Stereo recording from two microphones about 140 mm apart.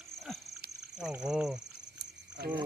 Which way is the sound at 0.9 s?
5° right (ahead or behind).